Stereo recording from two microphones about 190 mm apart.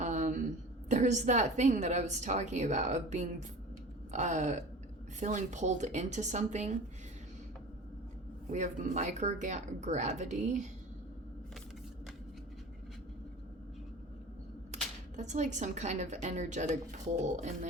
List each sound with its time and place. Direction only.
0.0 s a sound: 40° right (ahead or behind)
0.9 s a woman's voice: 40° right (ahead or behind)
8.5 s a woman's voice: 40° right (ahead or behind)
15.1 s a woman's voice: 40° right (ahead or behind)